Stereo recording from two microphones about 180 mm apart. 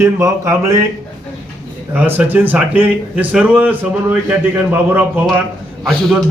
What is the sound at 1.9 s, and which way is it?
A man's voice, 10° right (ahead or behind).